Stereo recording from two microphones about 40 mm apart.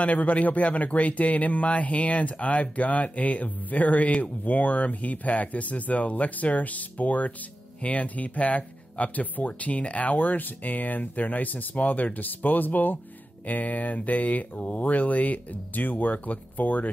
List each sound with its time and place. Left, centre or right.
0.0 s speech: left